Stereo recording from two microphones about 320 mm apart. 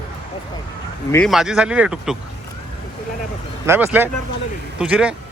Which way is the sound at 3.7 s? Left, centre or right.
Centre.